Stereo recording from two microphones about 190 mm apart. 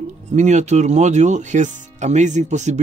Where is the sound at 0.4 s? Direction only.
40° right (ahead or behind).